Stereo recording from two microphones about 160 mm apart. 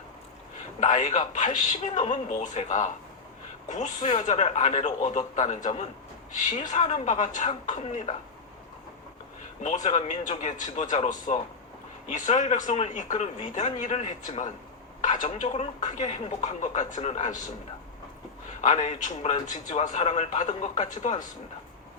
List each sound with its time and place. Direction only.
0.8 s a man's voice: 50° left (ahead or behind)
9.6 s a man's voice: 50° left (ahead or behind)
18.6 s a man's voice: 50° left (ahead or behind)